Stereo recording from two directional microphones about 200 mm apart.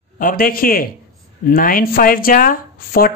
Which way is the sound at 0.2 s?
45° left (ahead or behind).